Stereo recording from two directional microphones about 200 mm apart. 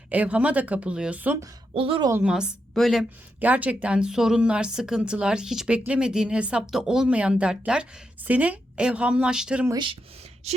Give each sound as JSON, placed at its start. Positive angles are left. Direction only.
{"t": 0.1, "sound": "a woman's voice", "side_deg": -5}
{"t": 1.7, "sound": "speech", "side_deg": -25}
{"t": 2.0, "sound": "a woman's voice", "side_deg": -10}
{"t": 9.7, "sound": "speech", "side_deg": -25}